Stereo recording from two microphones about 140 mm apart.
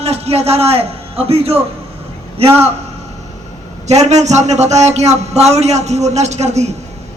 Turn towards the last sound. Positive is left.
turn(degrees=-50)  # may be behind; listen again after turning